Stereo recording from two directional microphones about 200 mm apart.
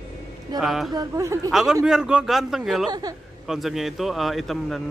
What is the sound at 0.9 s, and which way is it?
Speech, 15° right (ahead or behind).